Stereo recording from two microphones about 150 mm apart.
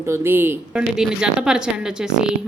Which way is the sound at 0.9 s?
5° right (ahead or behind).